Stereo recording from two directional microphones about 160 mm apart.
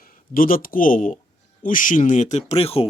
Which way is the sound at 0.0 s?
60° left (ahead or behind).